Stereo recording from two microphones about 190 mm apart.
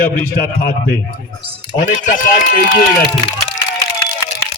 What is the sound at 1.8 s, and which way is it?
Speech, 45° left (ahead or behind).